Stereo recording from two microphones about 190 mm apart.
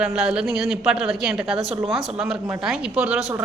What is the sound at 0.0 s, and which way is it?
A woman's voice, 5° right (ahead or behind).